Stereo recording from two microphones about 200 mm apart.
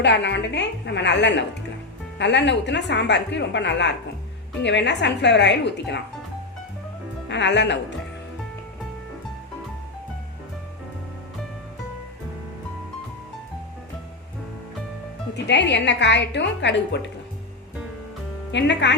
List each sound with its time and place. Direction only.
0.0 s a woman's voice: 60° left (ahead or behind)
7.3 s a woman's voice: 60° left (ahead or behind)
15.4 s a woman's voice: 60° left (ahead or behind)
18.5 s a woman's voice: 60° left (ahead or behind)